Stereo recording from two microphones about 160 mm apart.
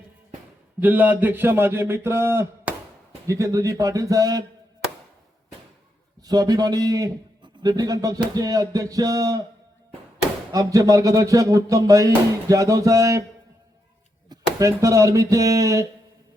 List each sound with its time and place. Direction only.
0.8 s a man's voice: 10° right (ahead or behind)
6.2 s a man's voice: 25° right (ahead or behind)
10.5 s a man's voice: 20° right (ahead or behind)
14.3 s speech: 20° right (ahead or behind)